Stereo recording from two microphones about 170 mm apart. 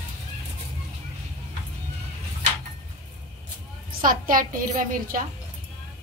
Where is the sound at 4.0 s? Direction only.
55° right (ahead or behind).